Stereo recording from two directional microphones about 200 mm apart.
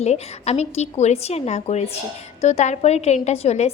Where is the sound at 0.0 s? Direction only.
30° left (ahead or behind).